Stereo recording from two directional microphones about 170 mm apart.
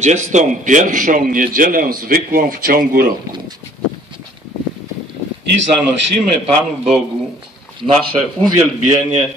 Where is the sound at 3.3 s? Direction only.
25° right (ahead or behind).